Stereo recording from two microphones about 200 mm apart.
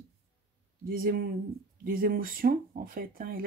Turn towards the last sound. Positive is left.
turn(degrees=-45)  # may be behind; listen again after turning